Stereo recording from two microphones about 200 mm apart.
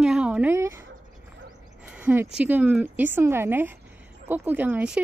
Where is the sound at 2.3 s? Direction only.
10° right (ahead or behind).